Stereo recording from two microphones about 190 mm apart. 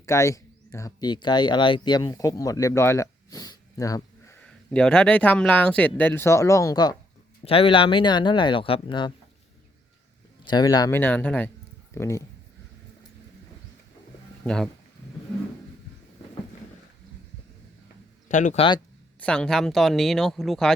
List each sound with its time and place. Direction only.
0.0 s speech: 15° left (ahead or behind)
4.4 s speech: 5° left (ahead or behind); by 9.1 s 25° left (ahead or behind)
10.4 s speech: 20° left (ahead or behind)
14.4 s speech: 5° left (ahead or behind)
18.3 s speech: 40° left (ahead or behind)
19.2 s speech: 5° left (ahead or behind)